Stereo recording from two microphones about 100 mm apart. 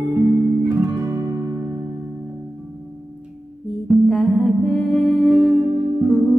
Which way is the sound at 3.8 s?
Centre (ahead or behind).